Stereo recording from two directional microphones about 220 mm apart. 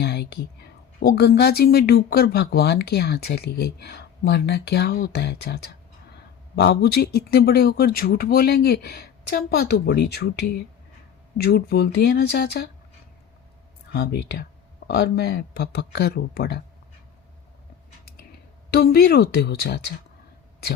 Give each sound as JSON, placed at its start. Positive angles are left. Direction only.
{"t": 0.0, "sound": "speech", "side_deg": 50}
{"t": 13.9, "sound": "speech", "side_deg": 45}
{"t": 18.7, "sound": "speech", "side_deg": 45}